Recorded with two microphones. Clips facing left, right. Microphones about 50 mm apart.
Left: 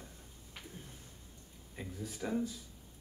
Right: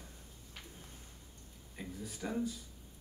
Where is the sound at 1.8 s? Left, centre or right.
Centre.